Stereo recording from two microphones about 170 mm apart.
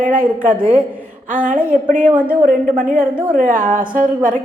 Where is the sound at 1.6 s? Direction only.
50° right (ahead or behind).